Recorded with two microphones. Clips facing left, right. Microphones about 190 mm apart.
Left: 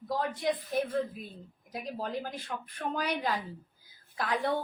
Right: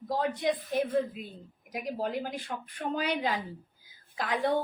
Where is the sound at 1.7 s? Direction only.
15° right (ahead or behind).